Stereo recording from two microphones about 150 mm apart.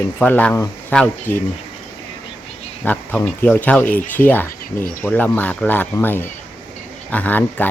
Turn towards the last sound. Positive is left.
turn(degrees=10)  # may be behind; listen again after turning